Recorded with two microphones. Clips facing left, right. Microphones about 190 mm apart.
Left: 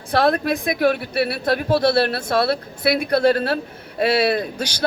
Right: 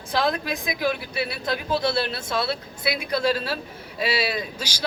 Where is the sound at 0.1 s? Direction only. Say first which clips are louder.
Left 6 dB; 60° left (ahead or behind).